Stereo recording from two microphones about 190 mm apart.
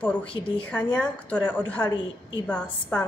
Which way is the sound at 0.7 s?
5° left (ahead or behind).